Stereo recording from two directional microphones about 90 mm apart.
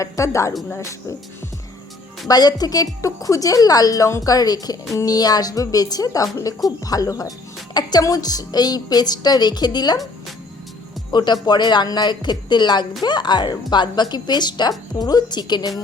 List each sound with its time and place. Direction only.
0.0 s speech: 35° left (ahead or behind)
2.2 s speech: 45° left (ahead or behind)
11.1 s speech: 55° left (ahead or behind)